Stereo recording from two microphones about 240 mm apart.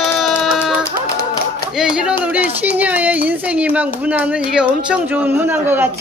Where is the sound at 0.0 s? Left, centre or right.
Centre.